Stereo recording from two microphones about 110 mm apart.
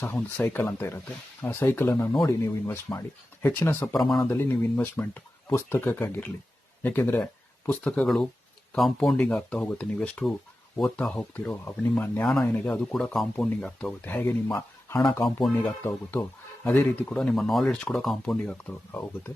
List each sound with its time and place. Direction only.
0.0 s speech: 15° left (ahead or behind)
3.9 s speech: centre (ahead or behind)
4.3 s speech: 20° left (ahead or behind)
7.9 s speech: 5° left (ahead or behind)
14.0 s speech: 15° left (ahead or behind)
15.8 s speech: 20° left (ahead or behind)
18.9 s speech: 25° left (ahead or behind)